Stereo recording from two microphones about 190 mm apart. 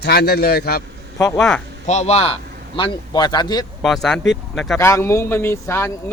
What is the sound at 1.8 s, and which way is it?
A man's voice, 35° left (ahead or behind).